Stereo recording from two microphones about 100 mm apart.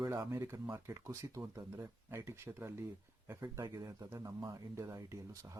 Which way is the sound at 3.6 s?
40° right (ahead or behind).